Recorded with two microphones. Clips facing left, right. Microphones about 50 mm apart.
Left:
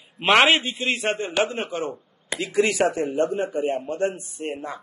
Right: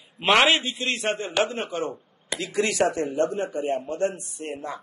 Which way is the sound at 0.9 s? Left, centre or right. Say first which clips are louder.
Even; centre.